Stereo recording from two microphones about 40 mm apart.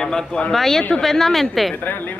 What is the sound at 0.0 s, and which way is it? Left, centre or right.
Speech, centre.